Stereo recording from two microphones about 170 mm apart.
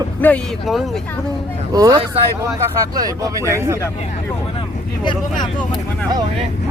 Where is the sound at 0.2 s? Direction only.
10° left (ahead or behind).